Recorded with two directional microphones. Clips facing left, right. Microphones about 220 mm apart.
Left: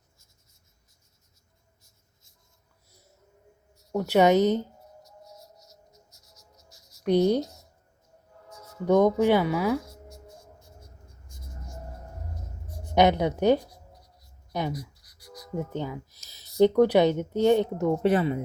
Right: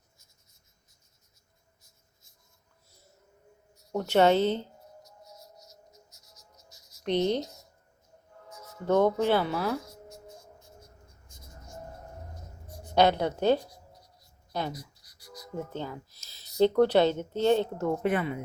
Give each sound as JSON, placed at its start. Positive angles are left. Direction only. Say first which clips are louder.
{"t": 3.9, "sound": "a woman's voice", "louder": "left 2 dB", "side_deg": 10}
{"t": 6.6, "sound": "writing", "louder": "left 1 dB", "side_deg": -20}
{"t": 7.0, "sound": "speech", "louder": "left 5 dB", "side_deg": 10}
{"t": 7.4, "sound": "a sound", "louder": "left 1 dB", "side_deg": -20}
{"t": 8.8, "sound": "a woman's voice", "louder": "left 4 dB", "side_deg": 15}
{"t": 12.8, "sound": "a woman's voice", "louder": "left 2 dB", "side_deg": 20}
{"t": 15.0, "sound": "music", "louder": "left 2 dB", "side_deg": -25}
{"t": 15.5, "sound": "a woman's voice", "louder": "left 4 dB", "side_deg": 15}
{"t": 18.0, "sound": "a woman's voice", "louder": "left 5 dB", "side_deg": 35}